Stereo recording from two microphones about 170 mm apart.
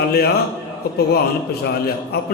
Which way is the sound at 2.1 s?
70° left (ahead or behind).